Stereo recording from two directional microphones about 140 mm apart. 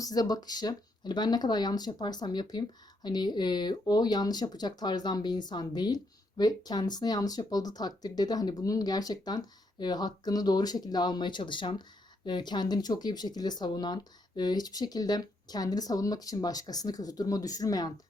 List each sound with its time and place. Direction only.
0.0 s speech: 25° left (ahead or behind)